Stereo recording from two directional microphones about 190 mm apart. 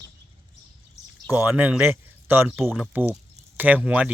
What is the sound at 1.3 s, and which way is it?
A man's voice, 10° right (ahead or behind).